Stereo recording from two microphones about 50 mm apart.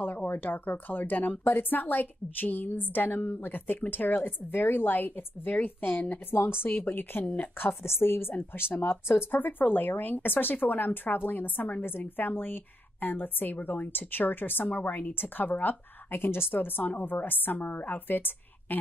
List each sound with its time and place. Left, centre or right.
0.3 s a woman's voice: left
9.4 s speech: left